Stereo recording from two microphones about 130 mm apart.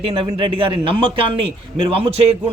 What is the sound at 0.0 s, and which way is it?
Speech, 40° right (ahead or behind).